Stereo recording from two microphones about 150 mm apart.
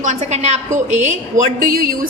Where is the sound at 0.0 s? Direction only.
55° right (ahead or behind).